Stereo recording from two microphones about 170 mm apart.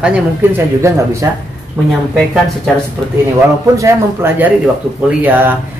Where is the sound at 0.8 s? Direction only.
20° right (ahead or behind).